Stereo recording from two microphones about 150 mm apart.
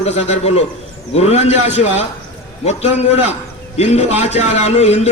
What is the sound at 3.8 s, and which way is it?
A man's voice, 45° left (ahead or behind).